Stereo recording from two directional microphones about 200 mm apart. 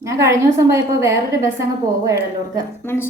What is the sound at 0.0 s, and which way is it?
A woman's voice, 15° right (ahead or behind).